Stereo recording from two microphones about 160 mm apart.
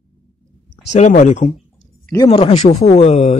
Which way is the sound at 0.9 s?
50° left (ahead or behind).